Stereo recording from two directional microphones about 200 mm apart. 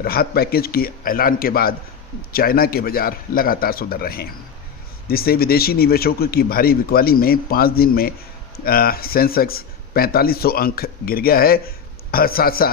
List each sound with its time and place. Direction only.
0.0 s speech: 50° left (ahead or behind)